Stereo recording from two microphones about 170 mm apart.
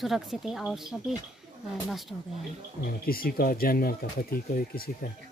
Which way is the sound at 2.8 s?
60° left (ahead or behind).